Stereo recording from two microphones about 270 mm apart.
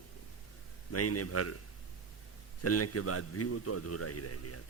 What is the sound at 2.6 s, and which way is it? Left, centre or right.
A man's voice, left.